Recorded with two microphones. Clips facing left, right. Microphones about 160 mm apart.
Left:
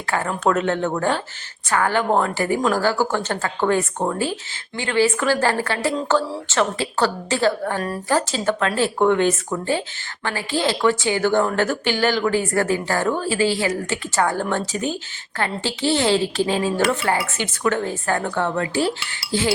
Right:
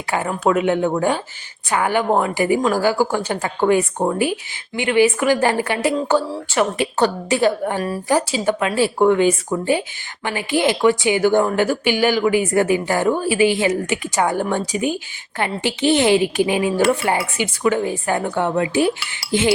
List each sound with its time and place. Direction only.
0.1 s speech: 10° right (ahead or behind)
2.8 s speech: 10° right (ahead or behind)
7.8 s speech: 5° right (ahead or behind)
19.3 s chink: 20° right (ahead or behind)